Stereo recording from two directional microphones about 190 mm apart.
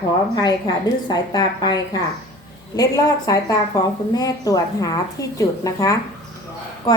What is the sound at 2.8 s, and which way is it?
A woman's voice, 20° left (ahead or behind).